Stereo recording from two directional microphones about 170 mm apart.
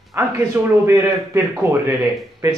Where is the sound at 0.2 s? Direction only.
15° right (ahead or behind).